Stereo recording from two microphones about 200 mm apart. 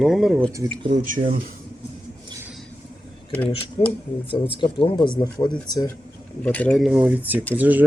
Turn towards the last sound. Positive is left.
turn(degrees=-10)  # may be behind; listen again after turning